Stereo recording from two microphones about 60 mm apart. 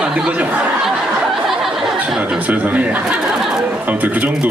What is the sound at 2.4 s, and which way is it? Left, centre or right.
Speech, right.